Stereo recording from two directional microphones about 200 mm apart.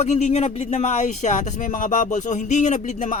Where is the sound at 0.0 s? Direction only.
35° left (ahead or behind).